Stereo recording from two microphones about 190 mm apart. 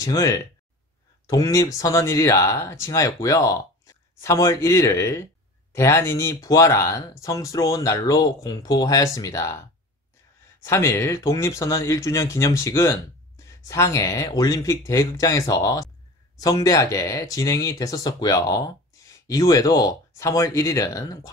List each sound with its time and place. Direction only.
0.0 s speech: 15° left (ahead or behind)
10.6 s speech: 15° left (ahead or behind)